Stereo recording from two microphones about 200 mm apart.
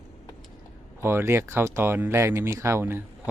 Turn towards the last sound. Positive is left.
turn(degrees=-10)  # may be behind; listen again after turning